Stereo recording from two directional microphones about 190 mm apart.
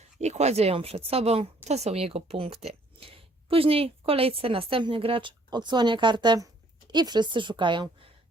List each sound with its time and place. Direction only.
0.2 s speech: 35° right (ahead or behind)